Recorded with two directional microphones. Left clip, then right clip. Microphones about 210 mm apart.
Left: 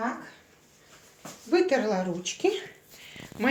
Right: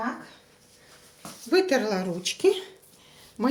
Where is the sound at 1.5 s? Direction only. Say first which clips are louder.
Right 1 dB; 30° right (ahead or behind).